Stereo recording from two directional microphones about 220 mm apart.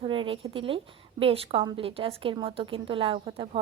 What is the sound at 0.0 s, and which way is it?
A woman's voice, 25° right (ahead or behind).